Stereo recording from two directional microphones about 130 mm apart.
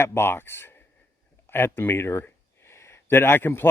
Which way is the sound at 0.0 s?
20° left (ahead or behind).